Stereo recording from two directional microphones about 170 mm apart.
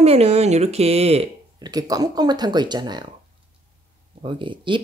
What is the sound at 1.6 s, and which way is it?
Speech, 20° right (ahead or behind).